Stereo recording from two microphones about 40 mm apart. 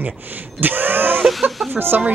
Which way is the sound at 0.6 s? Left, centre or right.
Right.